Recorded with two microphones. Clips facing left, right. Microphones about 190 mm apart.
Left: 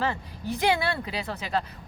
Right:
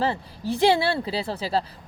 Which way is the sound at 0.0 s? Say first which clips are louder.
Right 4 dB; 30° right (ahead or behind).